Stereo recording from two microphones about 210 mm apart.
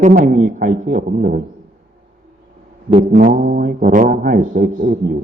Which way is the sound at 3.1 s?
40° right (ahead or behind).